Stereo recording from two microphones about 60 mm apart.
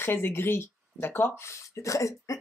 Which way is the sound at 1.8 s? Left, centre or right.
Left.